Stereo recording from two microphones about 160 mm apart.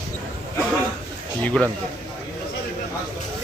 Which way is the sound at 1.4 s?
5° left (ahead or behind).